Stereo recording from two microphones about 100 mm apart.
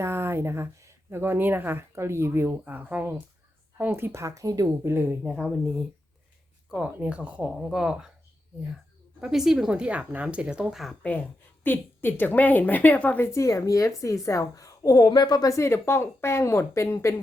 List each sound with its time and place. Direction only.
0.0 s speech: 25° right (ahead or behind)
6.7 s speech: 10° right (ahead or behind)
9.2 s speech: 5° right (ahead or behind)
11.0 s a woman's voice: 15° left (ahead or behind); by 15.1 s 35° left (ahead or behind)
15.1 s a woman's voice: 45° left (ahead or behind); by 17.2 s 30° left (ahead or behind)